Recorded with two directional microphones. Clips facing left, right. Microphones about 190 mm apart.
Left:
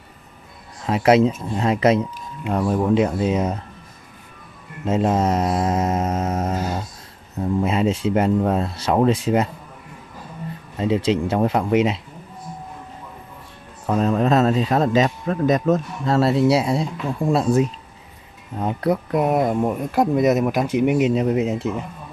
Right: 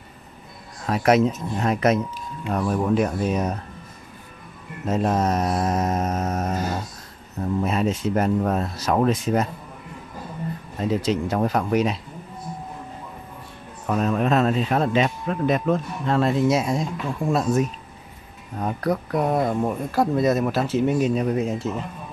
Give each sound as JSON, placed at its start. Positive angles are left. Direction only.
{"t": 0.8, "sound": "speech", "side_deg": 25}
{"t": 4.8, "sound": "speech", "side_deg": 25}
{"t": 7.6, "sound": "speech", "side_deg": 25}
{"t": 10.8, "sound": "speech", "side_deg": 25}
{"t": 13.8, "sound": "speech", "side_deg": 30}